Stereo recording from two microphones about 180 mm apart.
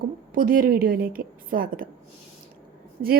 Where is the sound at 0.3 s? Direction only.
50° right (ahead or behind).